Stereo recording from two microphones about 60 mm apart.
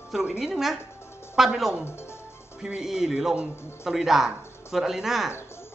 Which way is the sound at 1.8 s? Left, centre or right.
Left.